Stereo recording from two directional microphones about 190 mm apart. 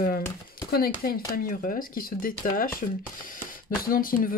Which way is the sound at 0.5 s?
50° left (ahead or behind).